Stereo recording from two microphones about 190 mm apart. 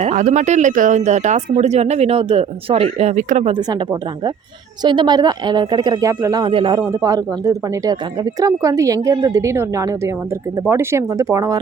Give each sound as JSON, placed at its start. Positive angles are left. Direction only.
{"t": 0.0, "sound": "speech", "side_deg": -40}
{"t": 4.8, "sound": "speech", "side_deg": -25}